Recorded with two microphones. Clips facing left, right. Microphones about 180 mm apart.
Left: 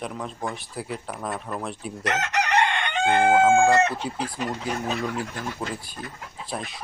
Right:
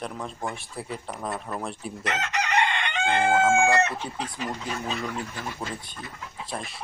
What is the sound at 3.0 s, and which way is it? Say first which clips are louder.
Crowing: left 4 dB; 50° left (ahead or behind).